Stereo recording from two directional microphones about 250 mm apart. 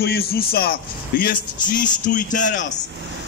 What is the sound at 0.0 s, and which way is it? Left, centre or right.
A man's voice, left.